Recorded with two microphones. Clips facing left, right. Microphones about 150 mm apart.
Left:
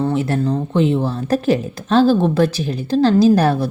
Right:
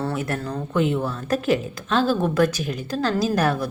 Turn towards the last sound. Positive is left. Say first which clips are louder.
# left 8 dB
turn(degrees=30)  # may be behind; listen again after turning